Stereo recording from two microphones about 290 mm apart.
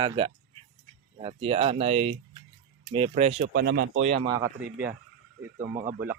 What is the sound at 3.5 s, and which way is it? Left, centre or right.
Speech, right.